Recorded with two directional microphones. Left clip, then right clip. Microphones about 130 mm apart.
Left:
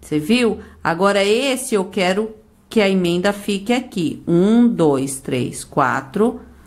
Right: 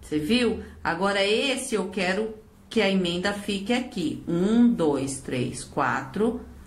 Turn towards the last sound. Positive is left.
turn(degrees=35)  # may be behind; listen again after turning